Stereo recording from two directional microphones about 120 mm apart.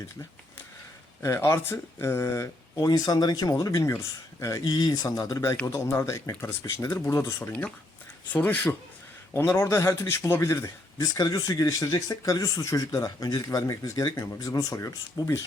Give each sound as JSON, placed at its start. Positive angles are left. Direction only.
{"t": 1.2, "sound": "speech", "side_deg": 25}
{"t": 8.3, "sound": "speech", "side_deg": 15}
{"t": 9.6, "sound": "speech", "side_deg": 25}